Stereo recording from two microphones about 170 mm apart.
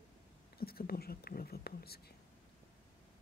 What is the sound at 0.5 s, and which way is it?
Speech, 65° left (ahead or behind).